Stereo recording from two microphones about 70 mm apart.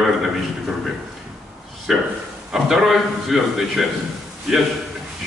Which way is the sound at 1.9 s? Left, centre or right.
Centre.